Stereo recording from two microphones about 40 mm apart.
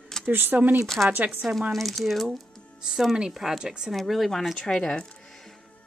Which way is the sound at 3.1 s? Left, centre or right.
Centre.